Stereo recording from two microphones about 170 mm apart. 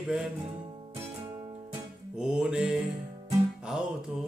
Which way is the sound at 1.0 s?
15° right (ahead or behind).